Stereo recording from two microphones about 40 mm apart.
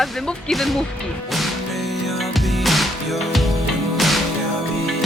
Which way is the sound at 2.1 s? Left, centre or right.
Centre.